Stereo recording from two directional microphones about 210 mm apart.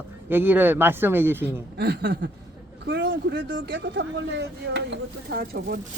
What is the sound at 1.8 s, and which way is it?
Speech, 50° right (ahead or behind).